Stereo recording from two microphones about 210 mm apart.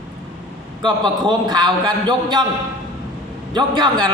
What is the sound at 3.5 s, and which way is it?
Speech, 20° right (ahead or behind).